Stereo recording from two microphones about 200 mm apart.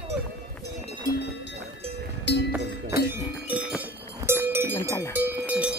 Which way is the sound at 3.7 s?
10° right (ahead or behind).